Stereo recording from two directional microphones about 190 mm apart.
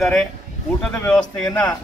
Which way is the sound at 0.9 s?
20° left (ahead or behind).